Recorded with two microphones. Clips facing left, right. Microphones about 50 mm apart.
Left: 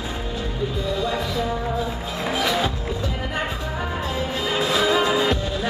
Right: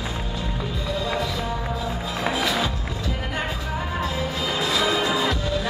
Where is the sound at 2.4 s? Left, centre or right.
Left.